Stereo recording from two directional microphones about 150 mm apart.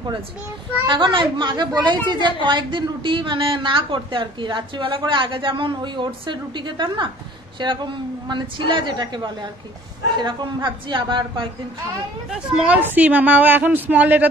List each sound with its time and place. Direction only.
0.8 s a woman's voice: 30° right (ahead or behind)
12.3 s a woman's voice: 5° right (ahead or behind)